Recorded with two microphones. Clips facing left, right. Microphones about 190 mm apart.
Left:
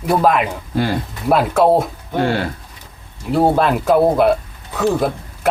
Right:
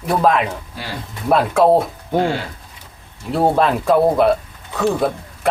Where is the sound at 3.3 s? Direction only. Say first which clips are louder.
Left 1 dB; centre (ahead or behind).